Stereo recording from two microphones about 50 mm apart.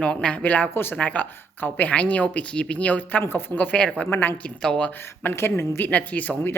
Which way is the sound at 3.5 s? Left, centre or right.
Left.